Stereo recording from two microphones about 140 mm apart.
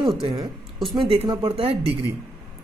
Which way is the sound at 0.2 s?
30° right (ahead or behind).